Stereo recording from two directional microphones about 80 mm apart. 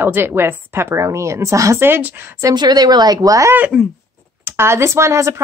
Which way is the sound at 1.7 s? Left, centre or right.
Right.